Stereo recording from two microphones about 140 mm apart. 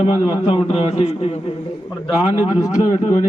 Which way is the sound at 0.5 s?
45° left (ahead or behind).